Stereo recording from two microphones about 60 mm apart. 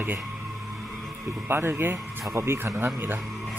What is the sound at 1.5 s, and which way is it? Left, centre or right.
Speech, right.